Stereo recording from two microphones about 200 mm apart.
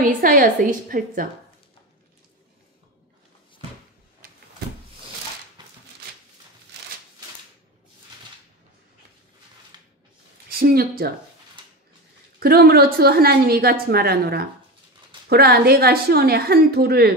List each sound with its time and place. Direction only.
0.0 s a woman's voice: 45° right (ahead or behind)
5.6 s a sound: 20° right (ahead or behind)
10.6 s a woman's voice: 50° right (ahead or behind)
12.4 s a woman's voice: 50° right (ahead or behind)